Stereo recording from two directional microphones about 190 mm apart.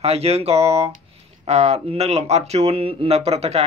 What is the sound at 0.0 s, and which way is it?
Speech, 35° right (ahead or behind).